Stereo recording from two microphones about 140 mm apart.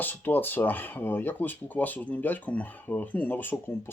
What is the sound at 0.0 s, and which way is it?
Speech, 15° left (ahead or behind).